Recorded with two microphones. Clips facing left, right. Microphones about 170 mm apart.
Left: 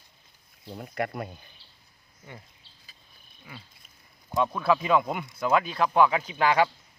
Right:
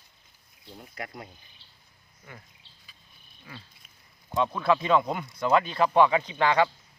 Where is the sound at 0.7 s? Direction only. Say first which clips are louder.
Left 9 dB; 65° left (ahead or behind).